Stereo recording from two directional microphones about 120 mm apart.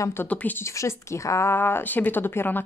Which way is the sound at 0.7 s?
25° left (ahead or behind).